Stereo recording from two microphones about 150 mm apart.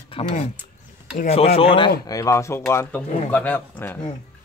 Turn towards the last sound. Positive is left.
turn(degrees=10)  # may be behind; listen again after turning